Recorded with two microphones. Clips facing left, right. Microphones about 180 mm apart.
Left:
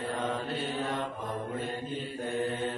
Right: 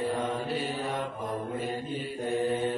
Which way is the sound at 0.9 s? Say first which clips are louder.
Right 2 dB; 25° right (ahead or behind).